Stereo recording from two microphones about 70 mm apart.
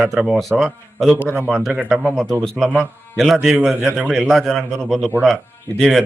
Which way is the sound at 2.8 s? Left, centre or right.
Centre.